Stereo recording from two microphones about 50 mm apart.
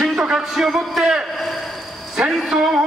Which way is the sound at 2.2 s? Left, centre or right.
Centre.